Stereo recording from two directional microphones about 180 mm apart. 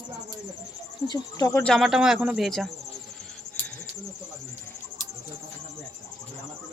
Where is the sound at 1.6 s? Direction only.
Centre (ahead or behind).